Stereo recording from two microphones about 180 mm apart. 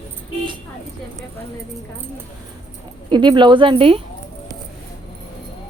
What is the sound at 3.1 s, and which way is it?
Speech, 25° right (ahead or behind).